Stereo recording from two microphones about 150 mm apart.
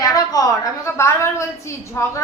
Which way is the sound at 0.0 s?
25° left (ahead or behind).